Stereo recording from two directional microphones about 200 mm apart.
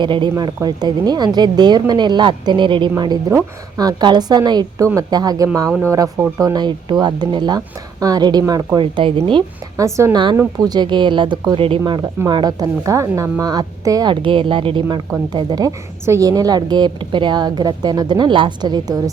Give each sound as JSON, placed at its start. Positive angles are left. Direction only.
{"t": 0.0, "sound": "a woman's voice", "side_deg": -25}